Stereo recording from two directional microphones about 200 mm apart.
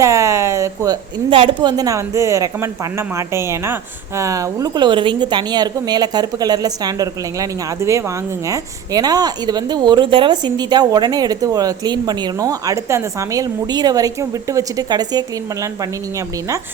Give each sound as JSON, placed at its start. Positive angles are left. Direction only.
{"t": 0.0, "sound": "a woman's voice", "side_deg": -15}